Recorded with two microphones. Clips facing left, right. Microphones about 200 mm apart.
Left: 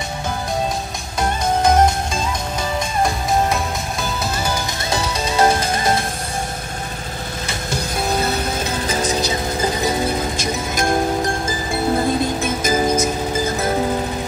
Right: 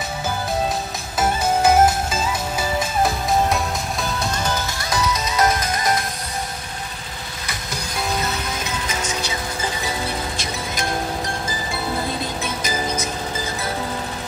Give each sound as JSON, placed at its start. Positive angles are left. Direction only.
{"t": 1.2, "sound": "music", "side_deg": -5}
{"t": 4.8, "sound": "music", "side_deg": 30}
{"t": 7.4, "sound": "music", "side_deg": 25}